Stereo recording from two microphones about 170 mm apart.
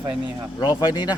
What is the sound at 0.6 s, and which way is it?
Speech, 25° left (ahead or behind).